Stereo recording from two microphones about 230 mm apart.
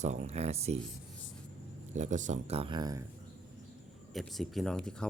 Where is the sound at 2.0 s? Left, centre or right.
Right.